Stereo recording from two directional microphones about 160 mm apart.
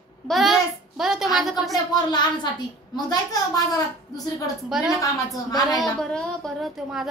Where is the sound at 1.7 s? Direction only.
25° left (ahead or behind).